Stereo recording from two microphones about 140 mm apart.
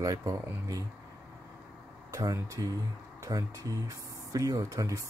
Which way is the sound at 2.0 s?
25° right (ahead or behind).